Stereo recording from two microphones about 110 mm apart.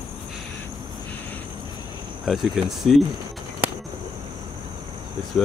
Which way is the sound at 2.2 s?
Centre (ahead or behind).